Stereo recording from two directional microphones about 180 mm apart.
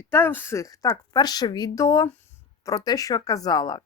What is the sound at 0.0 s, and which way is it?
Speech, 15° left (ahead or behind).